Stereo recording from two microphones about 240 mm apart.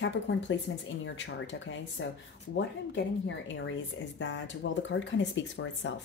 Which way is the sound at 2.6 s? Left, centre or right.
Left.